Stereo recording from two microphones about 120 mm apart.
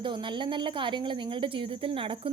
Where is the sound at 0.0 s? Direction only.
40° right (ahead or behind).